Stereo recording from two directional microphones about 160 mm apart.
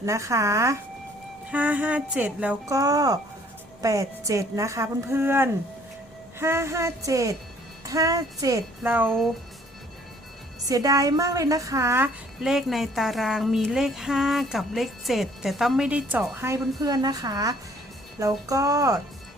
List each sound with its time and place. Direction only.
0.0 s a woman's voice: 20° right (ahead or behind)
2.6 s a woman's voice: 20° right (ahead or behind)
9.0 s speech: 5° left (ahead or behind)
10.7 s a woman's voice: 20° right (ahead or behind)
12.4 s a woman's voice: centre (ahead or behind); by 18.9 s 20° right (ahead or behind)